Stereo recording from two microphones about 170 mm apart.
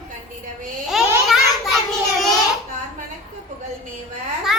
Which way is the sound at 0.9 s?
Centre (ahead or behind).